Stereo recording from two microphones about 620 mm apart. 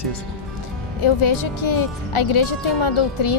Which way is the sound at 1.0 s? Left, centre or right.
Left.